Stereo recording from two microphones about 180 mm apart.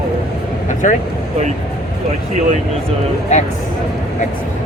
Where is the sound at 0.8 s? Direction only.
45° left (ahead or behind).